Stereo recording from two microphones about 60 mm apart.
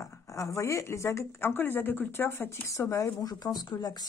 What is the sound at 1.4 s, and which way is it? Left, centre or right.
Speech, left.